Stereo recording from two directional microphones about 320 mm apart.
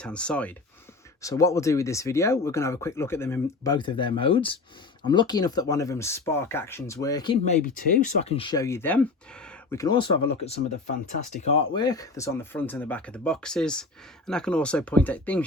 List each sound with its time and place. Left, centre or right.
0.0 s speech: centre
7.6 s speech: left; by 15.4 s centre